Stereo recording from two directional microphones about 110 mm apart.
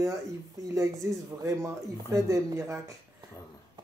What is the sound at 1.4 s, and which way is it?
Speech, 30° right (ahead or behind).